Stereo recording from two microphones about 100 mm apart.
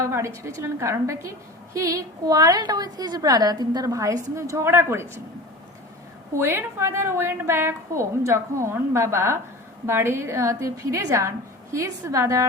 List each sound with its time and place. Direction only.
0.1 s a woman's voice: 30° right (ahead or behind)
6.3 s a woman's voice: 25° right (ahead or behind)